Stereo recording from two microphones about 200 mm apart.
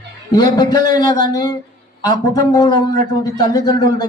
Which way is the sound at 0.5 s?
20° left (ahead or behind).